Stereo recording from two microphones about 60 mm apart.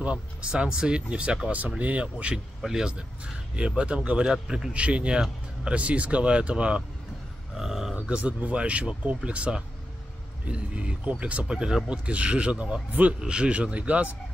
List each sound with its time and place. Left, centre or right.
0.0 s speech: centre
2.6 s speech: centre
5.8 s speech: right
7.5 s a sound: centre
7.9 s speech: centre